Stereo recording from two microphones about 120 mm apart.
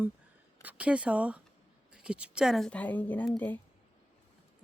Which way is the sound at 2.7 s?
15° left (ahead or behind).